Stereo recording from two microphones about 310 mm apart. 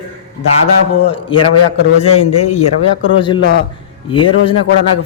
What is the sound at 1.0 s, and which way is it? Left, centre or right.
Speech, centre.